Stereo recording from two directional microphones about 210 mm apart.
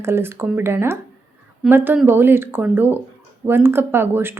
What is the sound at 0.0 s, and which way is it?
Speech, 10° right (ahead or behind).